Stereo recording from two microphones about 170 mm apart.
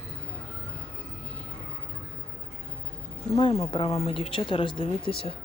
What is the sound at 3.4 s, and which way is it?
A woman's voice, 30° left (ahead or behind).